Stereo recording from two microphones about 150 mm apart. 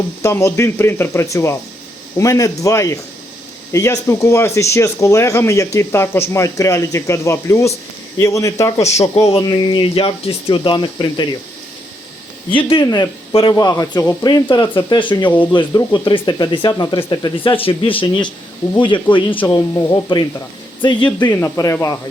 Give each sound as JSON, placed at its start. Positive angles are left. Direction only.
{"t": 0.2, "sound": "speech", "side_deg": 20}
{"t": 12.5, "sound": "speech", "side_deg": 35}
{"t": 21.3, "sound": "speech", "side_deg": 15}